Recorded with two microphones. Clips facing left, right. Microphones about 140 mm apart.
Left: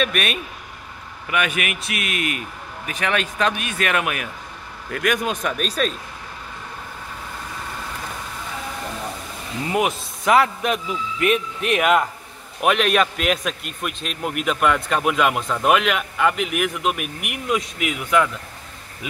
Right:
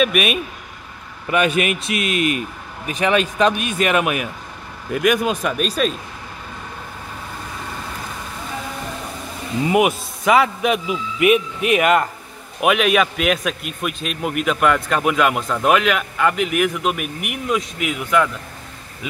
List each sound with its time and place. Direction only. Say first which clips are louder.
0.0 s a man's voice: right 5 dB; 10° right (ahead or behind)
1.3 s a man's voice: right 6 dB; 30° right (ahead or behind); by 5.9 s 5° right (ahead or behind)
9.7 s a man's voice: right 5 dB; 10° right (ahead or behind)